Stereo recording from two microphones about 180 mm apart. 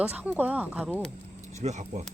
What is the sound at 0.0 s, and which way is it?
Speech, 10° right (ahead or behind).